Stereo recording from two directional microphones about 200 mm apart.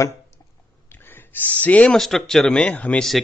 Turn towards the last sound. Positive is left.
turn(degrees=5)  # may be behind; listen again after turning